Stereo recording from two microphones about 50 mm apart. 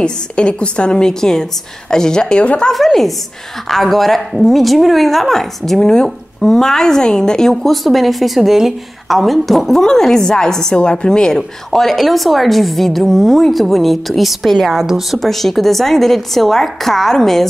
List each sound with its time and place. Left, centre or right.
0.0 s a woman's voice: left
2.7 s speech: centre